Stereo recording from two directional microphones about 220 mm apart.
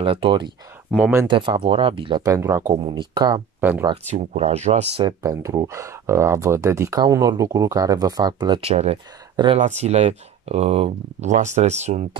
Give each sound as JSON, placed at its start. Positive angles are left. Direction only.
{"t": 0.0, "sound": "speech", "side_deg": -25}
{"t": 0.9, "sound": "speech", "side_deg": -5}
{"t": 1.2, "sound": "speech", "side_deg": -20}
{"t": 3.9, "sound": "speech", "side_deg": -30}
{"t": 5.2, "sound": "speech", "side_deg": -15}